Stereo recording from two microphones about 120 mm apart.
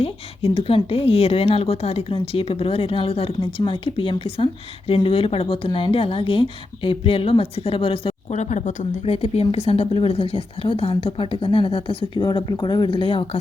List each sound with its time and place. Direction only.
0.0 s speech: 50° left (ahead or behind)
8.3 s a woman's voice: 75° left (ahead or behind); by 13.4 s 45° left (ahead or behind)